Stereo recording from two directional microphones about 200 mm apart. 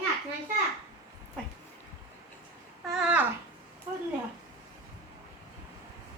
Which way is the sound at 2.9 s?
5° right (ahead or behind).